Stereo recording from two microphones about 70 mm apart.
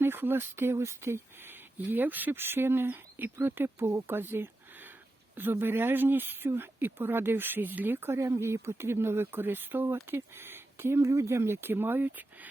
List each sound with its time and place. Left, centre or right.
0.0 s speech: right
1.8 s speech: right